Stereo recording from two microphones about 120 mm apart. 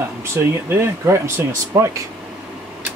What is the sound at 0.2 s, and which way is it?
Speech, 20° right (ahead or behind).